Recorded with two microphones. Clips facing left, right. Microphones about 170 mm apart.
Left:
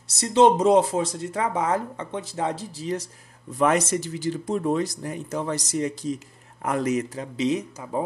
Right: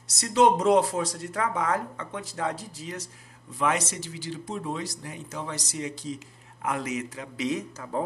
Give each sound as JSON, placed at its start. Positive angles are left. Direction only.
{"t": 0.1, "sound": "speech", "side_deg": 25}
{"t": 3.5, "sound": "a man's voice", "side_deg": 45}
{"t": 7.3, "sound": "speech", "side_deg": 25}